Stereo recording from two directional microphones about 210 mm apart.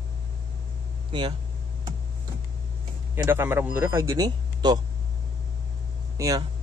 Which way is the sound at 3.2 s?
10° right (ahead or behind).